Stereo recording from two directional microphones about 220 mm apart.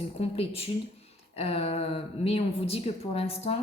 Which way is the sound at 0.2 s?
25° left (ahead or behind).